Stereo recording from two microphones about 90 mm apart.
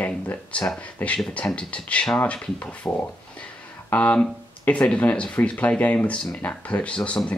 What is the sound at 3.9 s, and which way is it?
Speech, 15° left (ahead or behind).